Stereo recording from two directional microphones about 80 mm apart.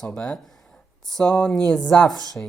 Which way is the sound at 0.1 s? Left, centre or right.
Centre.